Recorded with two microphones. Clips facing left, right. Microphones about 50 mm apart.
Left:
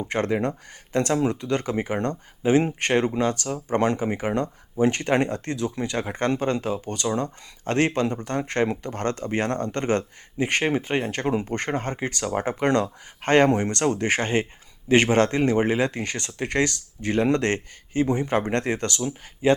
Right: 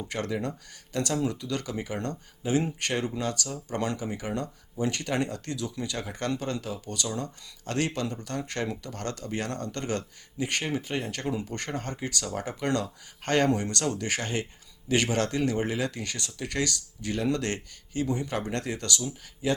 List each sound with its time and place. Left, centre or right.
0.0 s speech: left